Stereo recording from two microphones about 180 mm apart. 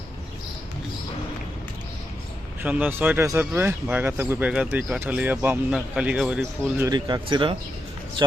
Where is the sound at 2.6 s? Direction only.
10° right (ahead or behind).